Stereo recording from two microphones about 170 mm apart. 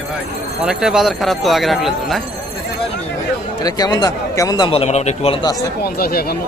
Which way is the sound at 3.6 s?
20° left (ahead or behind).